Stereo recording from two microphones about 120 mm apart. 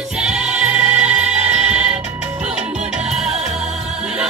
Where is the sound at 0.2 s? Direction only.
5° right (ahead or behind).